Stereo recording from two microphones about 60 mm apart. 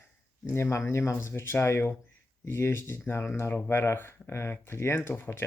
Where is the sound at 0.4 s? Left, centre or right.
Left.